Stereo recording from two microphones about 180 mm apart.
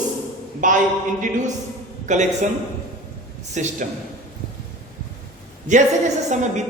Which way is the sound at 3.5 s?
40° right (ahead or behind).